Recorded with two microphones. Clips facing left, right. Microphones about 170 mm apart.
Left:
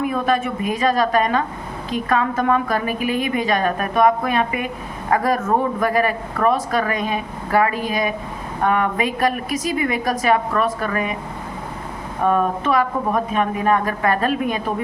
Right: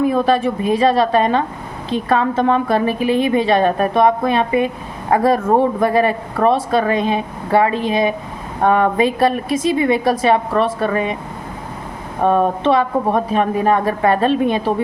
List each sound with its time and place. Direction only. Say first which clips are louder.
0.0 s a woman's voice: right 5 dB; 30° right (ahead or behind)
12.2 s speech: right 4 dB; 30° right (ahead or behind)